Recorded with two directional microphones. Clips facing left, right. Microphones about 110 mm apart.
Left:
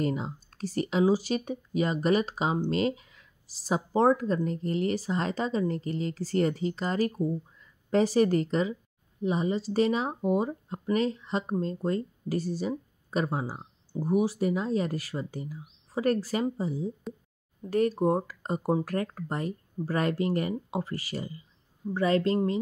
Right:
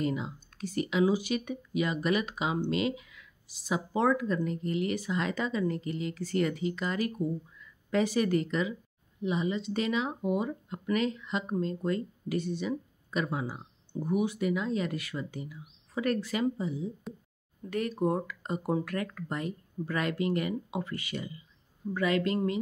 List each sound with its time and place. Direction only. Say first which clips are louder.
0.0 s speech: left 2 dB; 40° left (ahead or behind)